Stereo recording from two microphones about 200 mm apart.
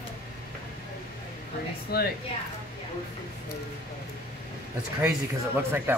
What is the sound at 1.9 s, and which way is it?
Speech, 50° left (ahead or behind).